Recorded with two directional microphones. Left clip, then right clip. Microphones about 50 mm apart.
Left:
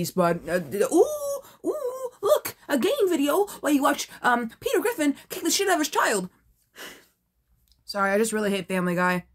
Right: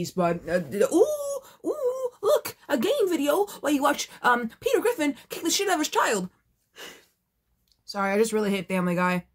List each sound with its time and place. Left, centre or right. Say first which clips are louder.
0.7 s whimper: even; centre
1.6 s speech: right 4 dB; centre
6.7 s a sound: left 1 dB; left
7.8 s speech: left 1 dB; left